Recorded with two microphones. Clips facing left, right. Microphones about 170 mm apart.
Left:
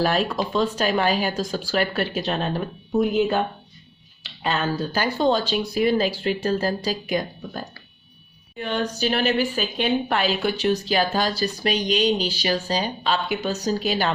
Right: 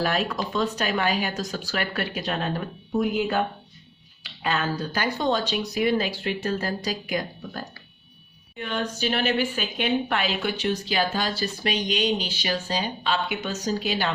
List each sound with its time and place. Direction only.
0.0 s speech: 30° left (ahead or behind)
7.1 s speech: 20° left (ahead or behind)
8.5 s speech: 35° left (ahead or behind)